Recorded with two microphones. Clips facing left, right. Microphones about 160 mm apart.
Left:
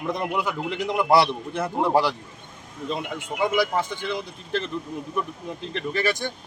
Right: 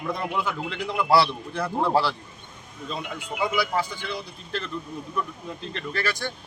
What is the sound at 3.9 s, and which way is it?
Speech, 20° left (ahead or behind).